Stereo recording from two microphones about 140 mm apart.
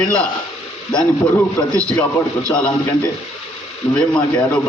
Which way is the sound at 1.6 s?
20° left (ahead or behind).